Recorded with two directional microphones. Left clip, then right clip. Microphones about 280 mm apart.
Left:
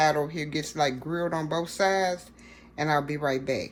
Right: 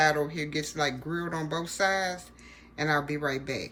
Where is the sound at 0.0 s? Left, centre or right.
Centre.